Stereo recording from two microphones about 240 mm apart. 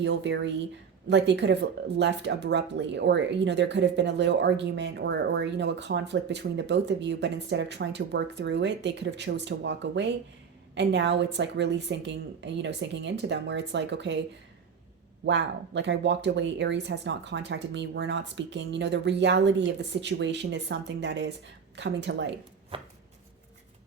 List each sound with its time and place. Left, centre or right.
0.0 s speech: right
15.2 s speech: right
22.7 s a sound: right